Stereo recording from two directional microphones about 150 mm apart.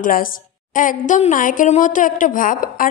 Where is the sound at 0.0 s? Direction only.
70° left (ahead or behind).